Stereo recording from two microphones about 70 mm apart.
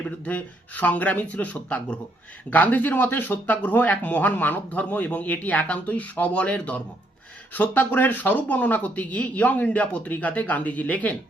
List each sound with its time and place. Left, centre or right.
0.3 s speech: left